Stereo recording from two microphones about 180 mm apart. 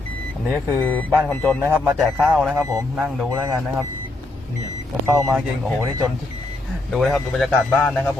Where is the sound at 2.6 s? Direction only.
20° right (ahead or behind).